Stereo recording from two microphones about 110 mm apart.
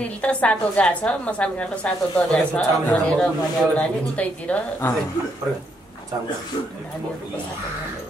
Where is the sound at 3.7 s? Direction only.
10° left (ahead or behind).